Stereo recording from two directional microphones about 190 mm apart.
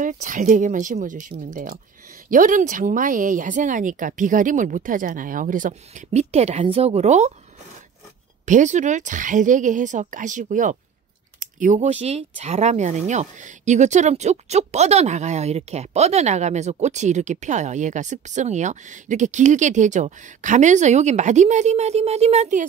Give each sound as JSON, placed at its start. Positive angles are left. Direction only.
{"t": 0.0, "sound": "speech", "side_deg": -45}
{"t": 8.5, "sound": "speech", "side_deg": -40}